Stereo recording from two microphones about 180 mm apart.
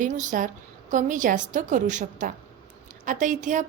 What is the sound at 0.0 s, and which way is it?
A woman's voice, 45° right (ahead or behind).